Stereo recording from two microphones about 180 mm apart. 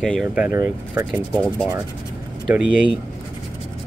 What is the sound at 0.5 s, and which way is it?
Speech, 15° right (ahead or behind).